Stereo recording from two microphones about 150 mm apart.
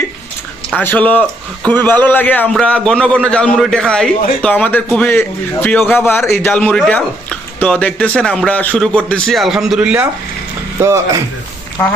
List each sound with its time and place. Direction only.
0.7 s a man's voice: 10° left (ahead or behind); by 10.0 s 5° right (ahead or behind)
10.8 s speech: 20° right (ahead or behind)